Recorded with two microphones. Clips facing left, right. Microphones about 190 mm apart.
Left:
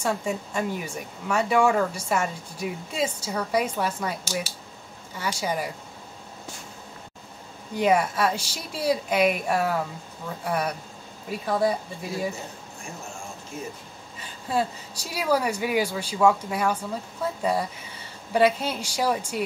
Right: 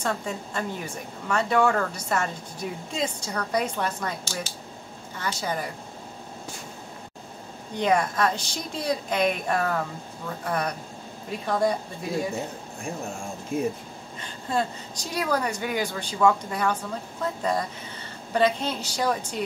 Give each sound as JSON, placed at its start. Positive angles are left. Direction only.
{"t": 0.0, "sound": "speech", "side_deg": 10}
{"t": 7.7, "sound": "speech", "side_deg": 10}
{"t": 13.5, "sound": "speech", "side_deg": -55}
{"t": 14.2, "sound": "speech", "side_deg": 5}